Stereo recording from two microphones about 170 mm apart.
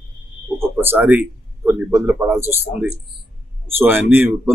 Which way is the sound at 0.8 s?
10° right (ahead or behind).